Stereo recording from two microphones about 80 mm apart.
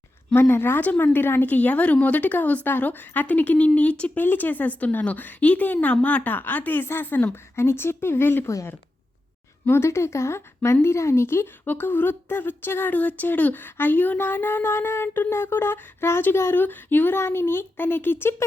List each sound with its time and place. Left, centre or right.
0.3 s speech: left
9.6 s speech: left